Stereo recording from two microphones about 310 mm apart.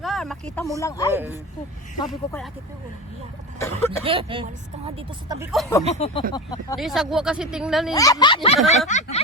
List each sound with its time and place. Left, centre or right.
0.0 s speech: centre
1.1 s speech: centre
3.6 s speech: centre
4.0 s speech: centre
5.5 s speech: centre
5.9 s speech: centre
6.7 s speech: centre
7.9 s speech: centre